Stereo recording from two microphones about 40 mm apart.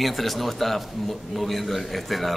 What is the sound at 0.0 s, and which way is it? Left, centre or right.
A man's voice, centre.